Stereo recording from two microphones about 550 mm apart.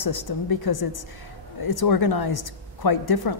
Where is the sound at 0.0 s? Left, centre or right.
Left.